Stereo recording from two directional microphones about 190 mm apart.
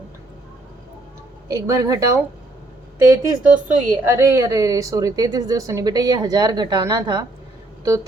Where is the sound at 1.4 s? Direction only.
15° right (ahead or behind).